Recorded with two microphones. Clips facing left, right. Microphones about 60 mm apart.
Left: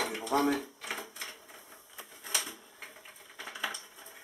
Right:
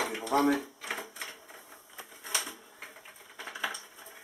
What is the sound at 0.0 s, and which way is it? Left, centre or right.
Typewriter, centre.